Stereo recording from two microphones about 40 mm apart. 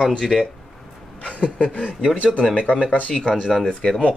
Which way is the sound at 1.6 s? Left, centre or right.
Left.